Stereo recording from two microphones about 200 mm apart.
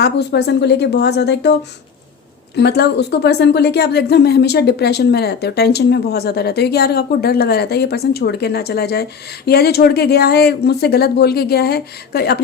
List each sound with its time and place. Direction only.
0.0 s speech: 55° left (ahead or behind)
2.6 s speech: 55° left (ahead or behind)